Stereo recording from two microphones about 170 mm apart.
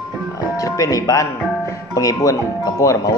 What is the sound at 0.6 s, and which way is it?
Speech, 20° left (ahead or behind).